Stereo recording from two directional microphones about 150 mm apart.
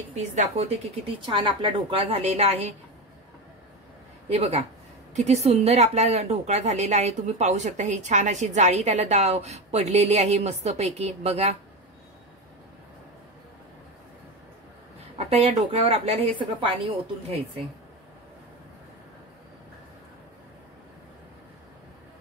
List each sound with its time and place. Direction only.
0.1 s a woman's voice: 50° right (ahead or behind)
1.2 s a woman's voice: 35° right (ahead or behind)
4.3 s a woman's voice: 45° right (ahead or behind)
15.1 s a woman's voice: 45° right (ahead or behind)